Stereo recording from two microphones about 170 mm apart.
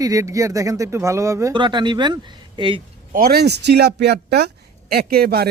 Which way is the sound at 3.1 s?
60° right (ahead or behind).